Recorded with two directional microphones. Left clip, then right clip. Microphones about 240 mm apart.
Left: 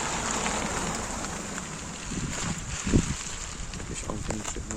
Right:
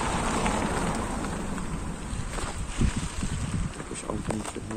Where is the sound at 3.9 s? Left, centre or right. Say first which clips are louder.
Right 2 dB; centre.